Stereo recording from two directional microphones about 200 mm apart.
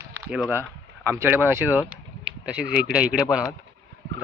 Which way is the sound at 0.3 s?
5° right (ahead or behind).